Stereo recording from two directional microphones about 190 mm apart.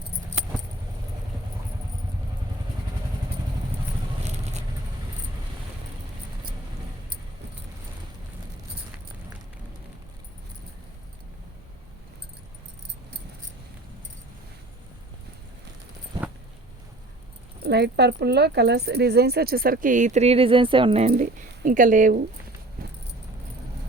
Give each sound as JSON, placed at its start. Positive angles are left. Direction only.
{"t": 4.2, "sound": "vehicle", "side_deg": -35}
{"t": 17.6, "sound": "speech", "side_deg": -60}
{"t": 21.1, "sound": "speech", "side_deg": -45}
{"t": 22.8, "sound": "keys jangling", "side_deg": -50}